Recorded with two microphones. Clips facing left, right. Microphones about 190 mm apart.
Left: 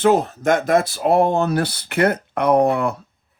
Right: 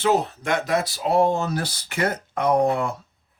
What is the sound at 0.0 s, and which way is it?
Speech, 50° left (ahead or behind).